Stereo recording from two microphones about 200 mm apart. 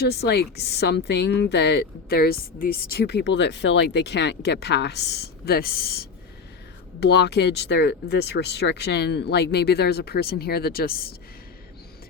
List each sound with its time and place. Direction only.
0.0 s speech: 55° left (ahead or behind)